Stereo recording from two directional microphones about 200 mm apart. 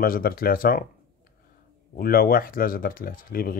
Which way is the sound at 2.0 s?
45° left (ahead or behind).